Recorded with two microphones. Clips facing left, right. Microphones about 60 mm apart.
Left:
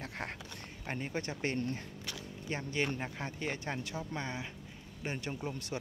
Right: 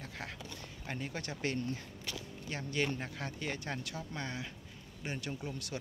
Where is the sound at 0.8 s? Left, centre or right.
Left.